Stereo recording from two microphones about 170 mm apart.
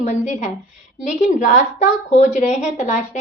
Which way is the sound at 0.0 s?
45° left (ahead or behind).